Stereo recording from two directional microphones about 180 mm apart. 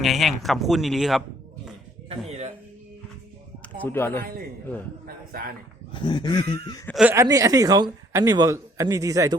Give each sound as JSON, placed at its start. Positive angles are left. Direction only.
{"t": 0.0, "sound": "speech", "side_deg": 0}
{"t": 2.0, "sound": "a sound", "side_deg": -35}
{"t": 3.8, "sound": "speech", "side_deg": 15}
{"t": 5.0, "sound": "a man's voice", "side_deg": -55}
{"t": 5.9, "sound": "speech", "side_deg": 25}
{"t": 6.8, "sound": "speech", "side_deg": 0}
{"t": 7.1, "sound": "a man's voice", "side_deg": -20}